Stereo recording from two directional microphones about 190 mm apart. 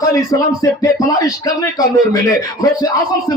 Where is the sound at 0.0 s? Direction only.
15° left (ahead or behind).